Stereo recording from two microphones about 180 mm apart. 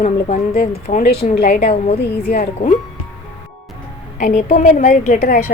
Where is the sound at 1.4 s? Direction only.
60° left (ahead or behind).